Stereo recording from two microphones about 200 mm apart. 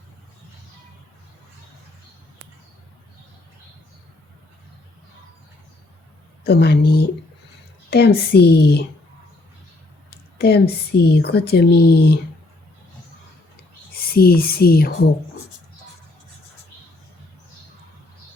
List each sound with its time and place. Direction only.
6.4 s speech: 50° left (ahead or behind)
10.1 s speech: 50° left (ahead or behind)
13.9 s speech: 50° left (ahead or behind)